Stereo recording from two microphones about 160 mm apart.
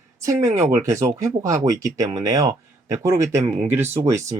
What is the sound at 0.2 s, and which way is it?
Speech, 20° right (ahead or behind).